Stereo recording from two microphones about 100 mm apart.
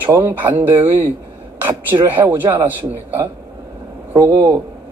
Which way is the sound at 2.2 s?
20° right (ahead or behind).